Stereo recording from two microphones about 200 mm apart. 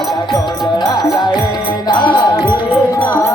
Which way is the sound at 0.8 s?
20° left (ahead or behind).